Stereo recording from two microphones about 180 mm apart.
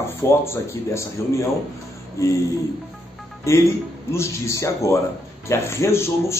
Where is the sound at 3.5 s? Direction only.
15° left (ahead or behind).